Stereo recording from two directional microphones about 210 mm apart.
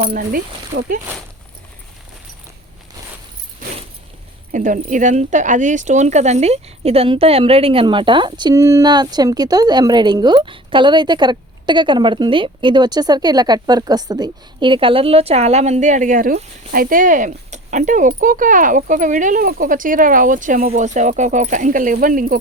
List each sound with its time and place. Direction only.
0.1 s speech: 40° right (ahead or behind)
4.5 s speech: 40° right (ahead or behind)